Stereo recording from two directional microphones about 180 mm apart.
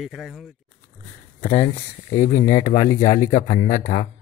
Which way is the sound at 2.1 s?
45° left (ahead or behind).